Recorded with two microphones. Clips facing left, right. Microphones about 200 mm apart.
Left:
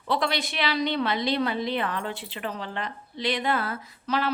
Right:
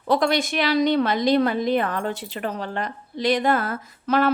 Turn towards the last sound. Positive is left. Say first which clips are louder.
# right 7 dB
turn(degrees=-50)  # may be behind; listen again after turning